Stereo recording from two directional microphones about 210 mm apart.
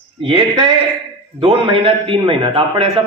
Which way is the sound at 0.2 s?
20° right (ahead or behind).